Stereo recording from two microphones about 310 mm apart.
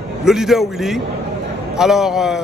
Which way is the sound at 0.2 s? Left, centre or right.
Centre.